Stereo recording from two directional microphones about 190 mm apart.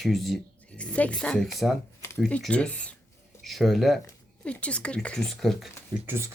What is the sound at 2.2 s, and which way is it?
Speech, 5° left (ahead or behind).